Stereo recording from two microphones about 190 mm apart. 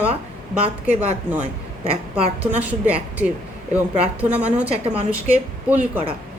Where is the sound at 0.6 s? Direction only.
35° right (ahead or behind).